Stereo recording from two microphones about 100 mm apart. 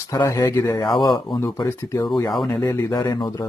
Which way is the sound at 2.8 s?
40° left (ahead or behind).